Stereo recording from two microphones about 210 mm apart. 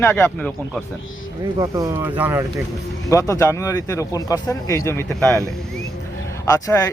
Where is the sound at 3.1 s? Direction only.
15° left (ahead or behind).